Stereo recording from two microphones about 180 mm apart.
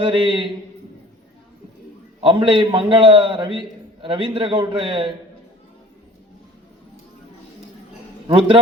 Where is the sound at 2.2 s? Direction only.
30° right (ahead or behind).